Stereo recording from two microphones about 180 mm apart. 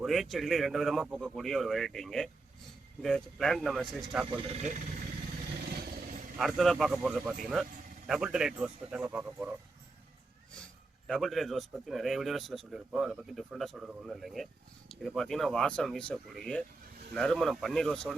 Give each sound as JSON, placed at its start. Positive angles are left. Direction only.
{"t": 0.0, "sound": "speech", "side_deg": 0}
{"t": 4.4, "sound": "speech", "side_deg": -30}
{"t": 6.3, "sound": "speech", "side_deg": 0}
{"t": 11.0, "sound": "speech", "side_deg": 0}